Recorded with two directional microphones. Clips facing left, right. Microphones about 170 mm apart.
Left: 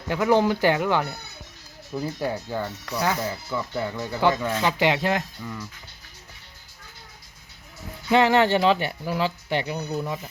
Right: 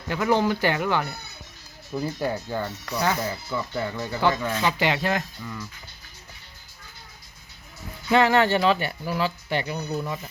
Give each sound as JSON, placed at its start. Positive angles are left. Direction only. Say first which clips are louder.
{"t": 0.1, "sound": "speech", "louder": "left 2 dB", "side_deg": 15}
{"t": 1.9, "sound": "speech", "louder": "right 1 dB", "side_deg": 0}
{"t": 8.1, "sound": "speech", "louder": "left 1 dB", "side_deg": 20}